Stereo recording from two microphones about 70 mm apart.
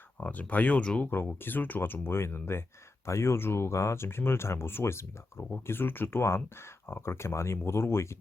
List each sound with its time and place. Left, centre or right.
0.2 s speech: left
1.4 s speech: left